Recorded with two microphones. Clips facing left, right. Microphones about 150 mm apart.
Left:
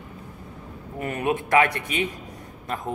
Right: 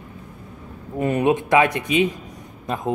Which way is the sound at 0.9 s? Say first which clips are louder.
Right 7 dB; 20° right (ahead or behind).